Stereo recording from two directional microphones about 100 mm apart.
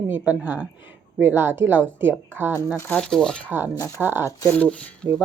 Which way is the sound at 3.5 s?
20° right (ahead or behind).